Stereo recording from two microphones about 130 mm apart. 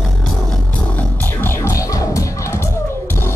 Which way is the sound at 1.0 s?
15° left (ahead or behind).